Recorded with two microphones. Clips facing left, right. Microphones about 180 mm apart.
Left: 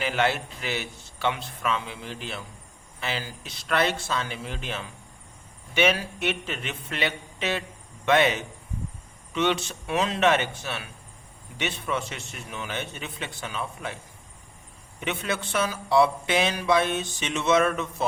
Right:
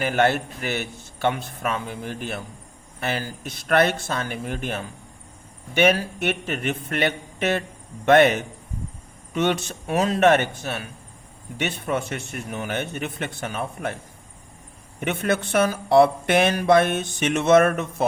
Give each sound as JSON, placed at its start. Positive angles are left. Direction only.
{"t": 0.0, "sound": "speech", "side_deg": -50}
{"t": 15.0, "sound": "speech", "side_deg": -50}